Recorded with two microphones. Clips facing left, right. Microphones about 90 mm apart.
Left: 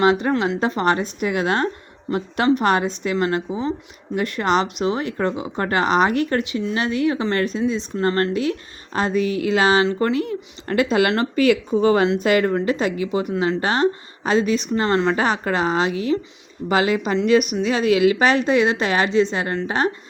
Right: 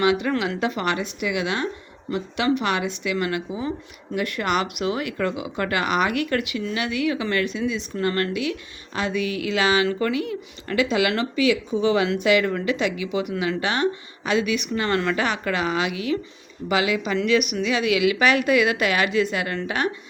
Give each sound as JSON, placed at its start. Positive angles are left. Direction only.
{"t": 0.0, "sound": "a woman's voice", "side_deg": 35}